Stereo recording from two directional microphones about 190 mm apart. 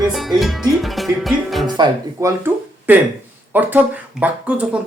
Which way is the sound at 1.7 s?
20° right (ahead or behind).